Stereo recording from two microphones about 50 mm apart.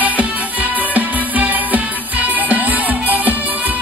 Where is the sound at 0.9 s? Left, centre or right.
Right.